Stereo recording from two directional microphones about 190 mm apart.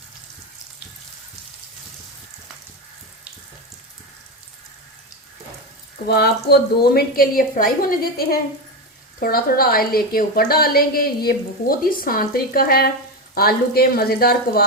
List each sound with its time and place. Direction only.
6.1 s a woman's voice: 55° left (ahead or behind)